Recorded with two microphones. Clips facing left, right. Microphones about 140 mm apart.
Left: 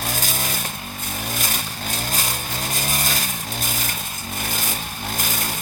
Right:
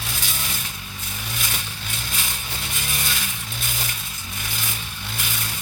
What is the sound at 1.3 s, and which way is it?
Vehicle, 45° left (ahead or behind).